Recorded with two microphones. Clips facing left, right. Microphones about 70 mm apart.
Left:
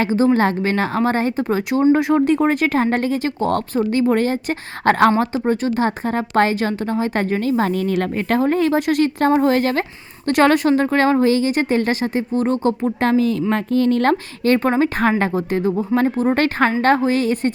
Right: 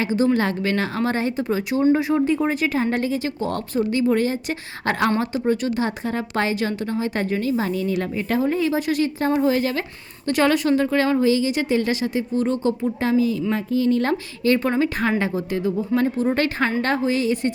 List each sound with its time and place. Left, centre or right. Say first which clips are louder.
0.0 s speech: left 4 dB; left
2.0 s a woman's voice: left 4 dB; left
5.2 s a woman's voice: left 3 dB; left
12.8 s a woman's voice: left 3 dB; left